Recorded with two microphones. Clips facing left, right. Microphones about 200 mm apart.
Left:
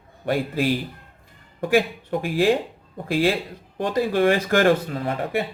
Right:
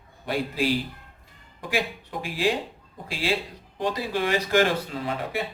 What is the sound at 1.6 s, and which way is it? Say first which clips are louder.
A man's voice: left 8 dB; 55° left (ahead or behind).